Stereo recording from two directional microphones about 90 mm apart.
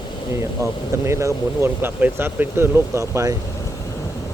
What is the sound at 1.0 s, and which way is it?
Speech, 30° right (ahead or behind).